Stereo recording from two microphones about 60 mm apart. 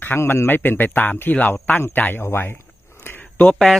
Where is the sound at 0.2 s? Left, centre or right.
Left.